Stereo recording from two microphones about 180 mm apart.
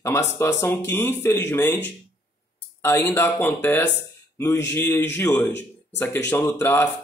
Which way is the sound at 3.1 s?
10° left (ahead or behind).